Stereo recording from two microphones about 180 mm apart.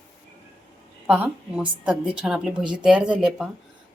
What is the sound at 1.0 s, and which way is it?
Speech, 5° right (ahead or behind).